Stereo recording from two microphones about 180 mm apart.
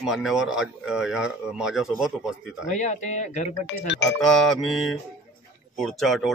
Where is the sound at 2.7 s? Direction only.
40° left (ahead or behind).